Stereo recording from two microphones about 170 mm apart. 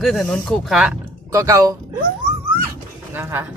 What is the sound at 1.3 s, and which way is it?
Speech, 20° right (ahead or behind).